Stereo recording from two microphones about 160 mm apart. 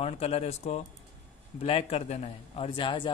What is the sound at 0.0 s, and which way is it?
A man's voice, 40° left (ahead or behind).